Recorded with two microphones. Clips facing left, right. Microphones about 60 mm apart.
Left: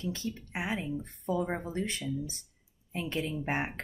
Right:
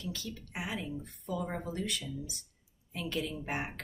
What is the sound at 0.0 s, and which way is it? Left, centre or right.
Speech, left.